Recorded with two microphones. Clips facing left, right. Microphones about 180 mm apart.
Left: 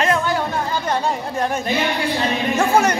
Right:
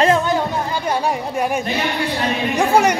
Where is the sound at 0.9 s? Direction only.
10° right (ahead or behind).